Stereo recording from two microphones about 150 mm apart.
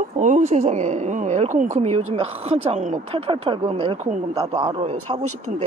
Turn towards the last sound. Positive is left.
turn(degrees=-45)  # may be behind; listen again after turning